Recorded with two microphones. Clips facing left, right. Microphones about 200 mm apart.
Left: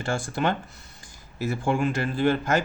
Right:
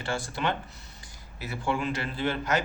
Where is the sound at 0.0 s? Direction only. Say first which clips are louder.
Left 4 dB; 45° left (ahead or behind).